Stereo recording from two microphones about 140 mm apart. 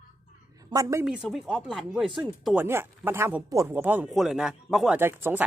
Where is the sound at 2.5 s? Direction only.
15° right (ahead or behind).